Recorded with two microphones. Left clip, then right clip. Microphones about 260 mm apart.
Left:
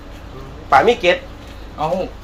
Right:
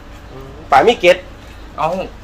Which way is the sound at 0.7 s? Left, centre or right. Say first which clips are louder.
Right 3 dB; right.